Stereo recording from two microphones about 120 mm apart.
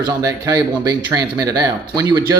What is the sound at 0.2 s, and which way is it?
Speech, 25° right (ahead or behind).